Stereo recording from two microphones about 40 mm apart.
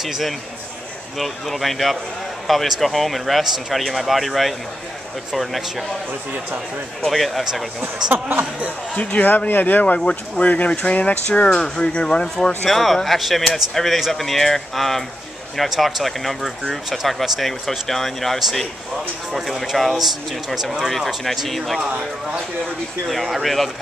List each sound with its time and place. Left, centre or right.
0.0 s speech: centre
7.1 s speech: centre
7.8 s speech: right
8.4 s speech: right
9.2 s speech: left
9.9 s speech: centre
10.4 s speech: left
11.4 s speech: centre
12.6 s speech: centre
20.8 s speech: centre
21.8 s speech: right
23.0 s speech: centre